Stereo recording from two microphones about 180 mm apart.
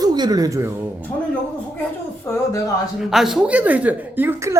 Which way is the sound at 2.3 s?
15° left (ahead or behind).